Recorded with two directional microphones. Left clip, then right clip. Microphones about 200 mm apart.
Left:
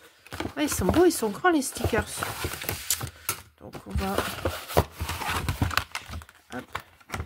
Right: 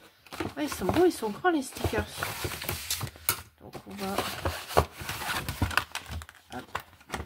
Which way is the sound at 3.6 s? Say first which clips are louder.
Left 4 dB; 40° left (ahead or behind).